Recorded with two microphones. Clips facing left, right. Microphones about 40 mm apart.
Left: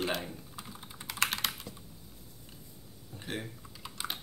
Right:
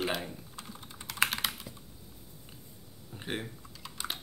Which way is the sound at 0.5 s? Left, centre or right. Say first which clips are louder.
Even; centre.